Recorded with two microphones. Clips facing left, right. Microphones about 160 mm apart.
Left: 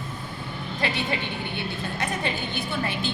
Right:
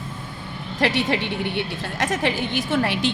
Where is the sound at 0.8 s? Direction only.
85° right.